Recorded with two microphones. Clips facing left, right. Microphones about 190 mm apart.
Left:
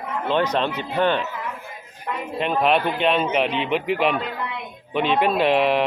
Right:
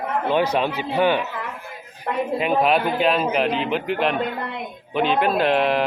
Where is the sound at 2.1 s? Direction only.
50° right (ahead or behind).